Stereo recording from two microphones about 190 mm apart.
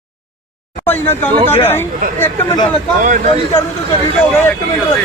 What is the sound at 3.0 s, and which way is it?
Speech, 40° right (ahead or behind).